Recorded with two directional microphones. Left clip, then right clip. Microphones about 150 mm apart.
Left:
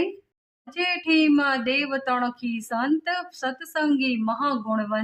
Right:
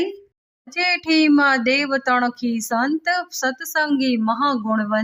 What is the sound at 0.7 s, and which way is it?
A woman's voice, 35° right (ahead or behind).